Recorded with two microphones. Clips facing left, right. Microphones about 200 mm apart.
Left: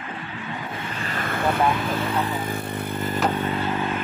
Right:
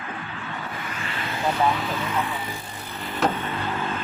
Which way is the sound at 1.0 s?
45° left (ahead or behind).